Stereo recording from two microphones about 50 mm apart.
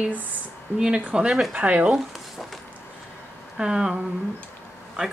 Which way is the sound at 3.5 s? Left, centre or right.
Centre.